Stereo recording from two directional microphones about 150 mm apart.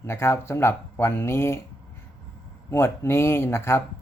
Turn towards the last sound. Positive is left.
turn(degrees=15)  # may be behind; listen again after turning